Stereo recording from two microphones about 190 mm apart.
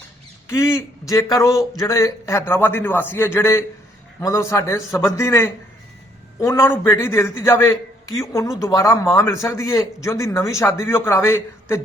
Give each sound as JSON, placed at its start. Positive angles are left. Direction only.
{"t": 0.4, "sound": "a man's voice", "side_deg": 15}